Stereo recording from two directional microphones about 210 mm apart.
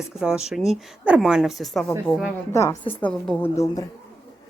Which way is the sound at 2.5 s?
15° left (ahead or behind).